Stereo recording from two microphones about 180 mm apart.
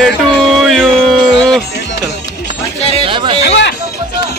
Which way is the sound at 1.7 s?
65° left (ahead or behind).